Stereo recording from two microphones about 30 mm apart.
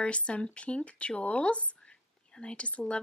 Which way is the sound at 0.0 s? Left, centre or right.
Left.